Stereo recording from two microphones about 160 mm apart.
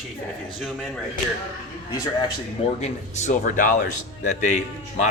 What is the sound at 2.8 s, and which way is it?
A man's voice, 45° left (ahead or behind).